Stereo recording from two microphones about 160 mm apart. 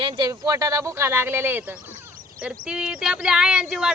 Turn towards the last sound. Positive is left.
turn(degrees=0)  # may be behind; listen again after turning